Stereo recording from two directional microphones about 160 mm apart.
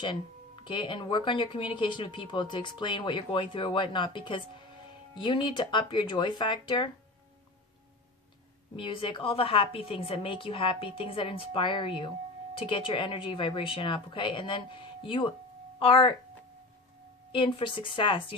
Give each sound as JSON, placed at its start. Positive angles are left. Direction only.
{"t": 0.0, "sound": "speech", "side_deg": 30}
{"t": 8.7, "sound": "speech", "side_deg": 35}
{"t": 17.3, "sound": "speech", "side_deg": 35}